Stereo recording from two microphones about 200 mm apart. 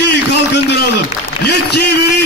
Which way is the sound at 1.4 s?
55° left (ahead or behind).